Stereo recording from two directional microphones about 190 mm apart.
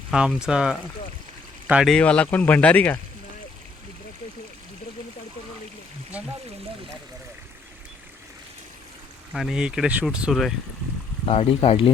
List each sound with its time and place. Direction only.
0.1 s speech: 5° right (ahead or behind)
6.1 s speech: 5° right (ahead or behind)
9.3 s speech: centre (ahead or behind)
11.3 s speech: 30° left (ahead or behind)